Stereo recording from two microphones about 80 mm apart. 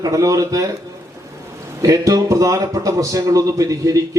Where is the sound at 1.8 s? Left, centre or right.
Right.